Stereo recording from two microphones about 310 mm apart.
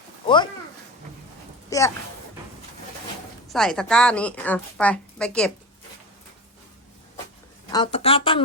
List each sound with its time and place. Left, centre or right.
1.7 s a sound: centre
3.5 s a woman's voice: centre
7.7 s speech: centre